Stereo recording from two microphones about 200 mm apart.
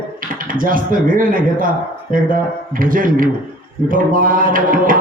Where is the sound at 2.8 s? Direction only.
45° right (ahead or behind).